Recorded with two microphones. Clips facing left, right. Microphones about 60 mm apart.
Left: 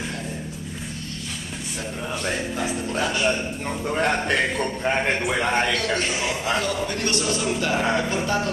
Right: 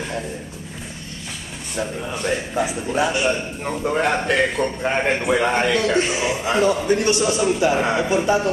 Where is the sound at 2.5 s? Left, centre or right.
Centre.